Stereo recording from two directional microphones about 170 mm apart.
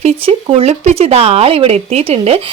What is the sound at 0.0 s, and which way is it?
Speech, 35° right (ahead or behind).